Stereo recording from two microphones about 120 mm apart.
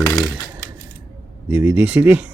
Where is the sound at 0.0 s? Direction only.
25° left (ahead or behind).